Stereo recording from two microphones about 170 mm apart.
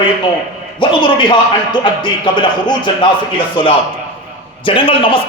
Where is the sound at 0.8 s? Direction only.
30° left (ahead or behind).